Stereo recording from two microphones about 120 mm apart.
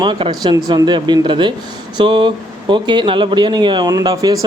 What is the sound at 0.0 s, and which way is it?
A man's voice, 40° right (ahead or behind).